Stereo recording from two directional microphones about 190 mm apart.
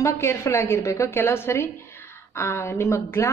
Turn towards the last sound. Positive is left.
turn(degrees=15)  # may be behind; listen again after turning